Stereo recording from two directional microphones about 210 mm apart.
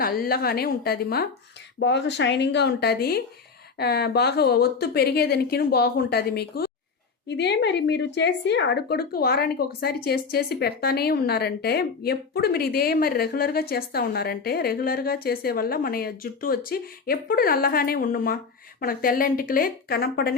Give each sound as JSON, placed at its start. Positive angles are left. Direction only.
{"t": 0.0, "sound": "a woman's voice", "side_deg": 45}